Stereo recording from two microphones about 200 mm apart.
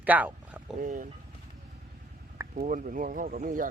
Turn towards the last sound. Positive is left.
turn(degrees=-40)  # may be behind; listen again after turning